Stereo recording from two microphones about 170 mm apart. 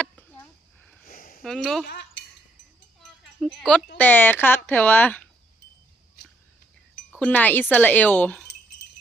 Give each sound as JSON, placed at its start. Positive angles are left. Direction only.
{"t": 0.0, "sound": "a sound", "side_deg": 5}
{"t": 1.0, "sound": "a sound", "side_deg": 60}
{"t": 1.4, "sound": "speech", "side_deg": 0}
{"t": 1.9, "sound": "cutlery", "side_deg": 80}
{"t": 3.0, "sound": "sheep", "side_deg": 0}
{"t": 3.9, "sound": "speech", "side_deg": 10}
{"t": 7.2, "sound": "speech", "side_deg": 10}